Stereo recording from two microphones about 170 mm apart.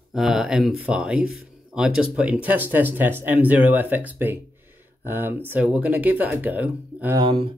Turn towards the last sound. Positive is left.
turn(degrees=-30)  # may be behind; listen again after turning